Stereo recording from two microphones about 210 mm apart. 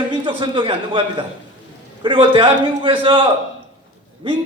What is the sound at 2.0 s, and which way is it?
A man's voice, 25° right (ahead or behind).